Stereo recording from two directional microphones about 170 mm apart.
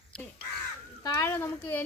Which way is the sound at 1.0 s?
15° left (ahead or behind).